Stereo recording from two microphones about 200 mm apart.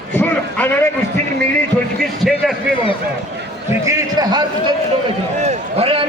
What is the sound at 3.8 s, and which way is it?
Speech, 20° right (ahead or behind).